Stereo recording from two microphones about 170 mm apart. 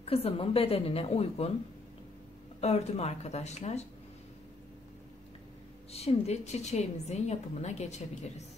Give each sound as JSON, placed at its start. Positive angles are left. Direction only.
{"t": 0.0, "sound": "a woman's voice", "side_deg": 35}
{"t": 2.6, "sound": "a woman's voice", "side_deg": 40}
{"t": 5.9, "sound": "a woman's voice", "side_deg": 40}